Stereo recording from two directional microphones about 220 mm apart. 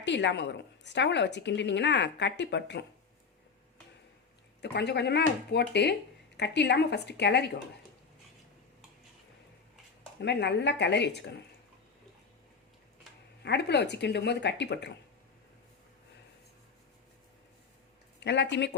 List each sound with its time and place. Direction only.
0.0 s a woman's voice: 55° left (ahead or behind)
4.6 s a woman's voice: 50° left (ahead or behind)
10.2 s a woman's voice: 50° left (ahead or behind)
13.4 s a woman's voice: 50° left (ahead or behind)
18.2 s a woman's voice: 50° left (ahead or behind)